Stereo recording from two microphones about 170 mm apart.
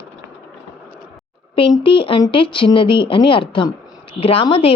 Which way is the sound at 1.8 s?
30° left (ahead or behind).